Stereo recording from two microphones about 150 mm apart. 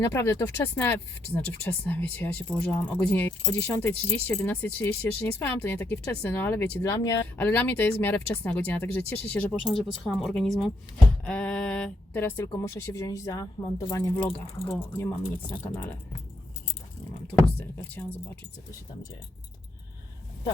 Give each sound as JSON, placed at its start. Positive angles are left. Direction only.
{"t": 0.0, "sound": "speech", "side_deg": 15}
{"t": 7.3, "sound": "a woman's voice", "side_deg": 10}
{"t": 17.7, "sound": "speech", "side_deg": 10}